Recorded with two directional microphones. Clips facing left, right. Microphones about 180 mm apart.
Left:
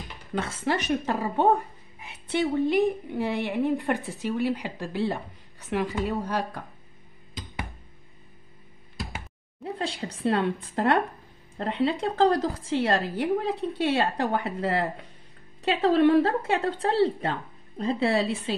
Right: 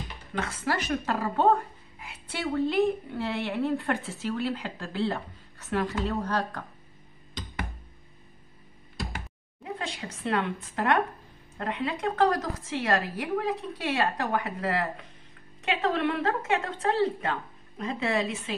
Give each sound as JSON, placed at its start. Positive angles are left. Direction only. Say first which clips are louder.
{"t": 0.4, "sound": "speech", "louder": "left 2 dB", "side_deg": 25}
{"t": 9.6, "sound": "a woman's voice", "louder": "left 4 dB", "side_deg": 35}